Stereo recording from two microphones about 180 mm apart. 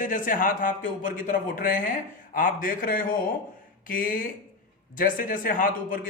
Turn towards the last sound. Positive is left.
turn(degrees=50)  # may be behind; listen again after turning